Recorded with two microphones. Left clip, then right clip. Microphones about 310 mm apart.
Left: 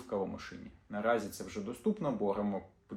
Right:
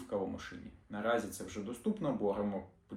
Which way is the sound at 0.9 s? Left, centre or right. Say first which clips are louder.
Left 2 dB; centre.